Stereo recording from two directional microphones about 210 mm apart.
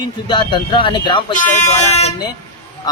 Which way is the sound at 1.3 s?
35° left (ahead or behind).